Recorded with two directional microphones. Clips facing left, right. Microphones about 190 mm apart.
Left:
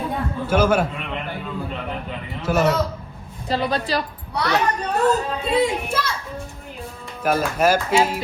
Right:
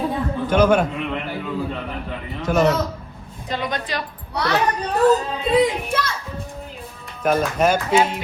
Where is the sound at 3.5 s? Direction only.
35° left (ahead or behind).